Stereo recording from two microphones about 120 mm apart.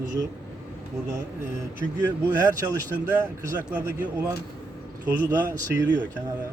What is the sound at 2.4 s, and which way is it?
Speech, 30° right (ahead or behind).